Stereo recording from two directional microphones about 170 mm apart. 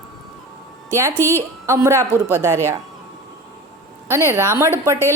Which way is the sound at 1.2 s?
15° left (ahead or behind).